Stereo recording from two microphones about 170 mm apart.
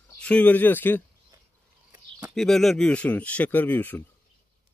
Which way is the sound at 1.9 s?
10° right (ahead or behind).